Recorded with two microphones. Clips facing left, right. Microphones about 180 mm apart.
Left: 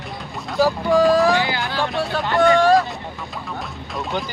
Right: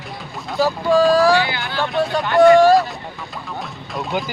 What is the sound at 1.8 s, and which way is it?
Speech, centre (ahead or behind).